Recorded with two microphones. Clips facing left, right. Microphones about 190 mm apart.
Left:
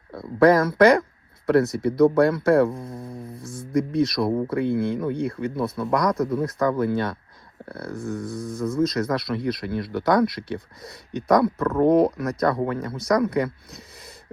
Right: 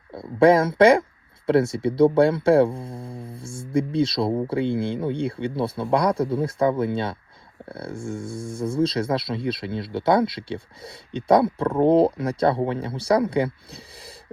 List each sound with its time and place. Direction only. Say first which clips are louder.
0.1 s speech: right 1 dB; 25° right (ahead or behind)